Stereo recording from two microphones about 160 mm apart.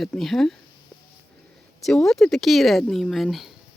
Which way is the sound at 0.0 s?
Centre (ahead or behind).